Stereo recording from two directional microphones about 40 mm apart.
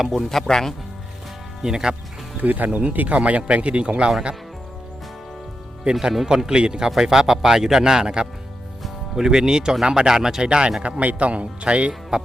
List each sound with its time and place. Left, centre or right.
0.0 s speech: centre
0.3 s speech: centre
1.6 s a man's voice: centre
2.4 s speech: right
5.9 s a man's voice: centre
10.8 s speech: right
12.1 s speech: centre